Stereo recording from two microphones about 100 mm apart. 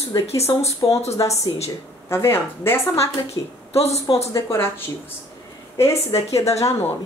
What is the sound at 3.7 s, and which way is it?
Speech, 90° left.